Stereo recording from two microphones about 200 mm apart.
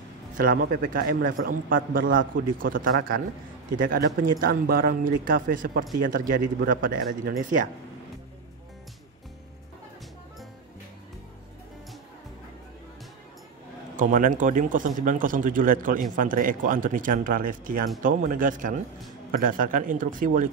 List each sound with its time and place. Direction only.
0.4 s speech: 50° right (ahead or behind)
13.9 s speech: 40° right (ahead or behind)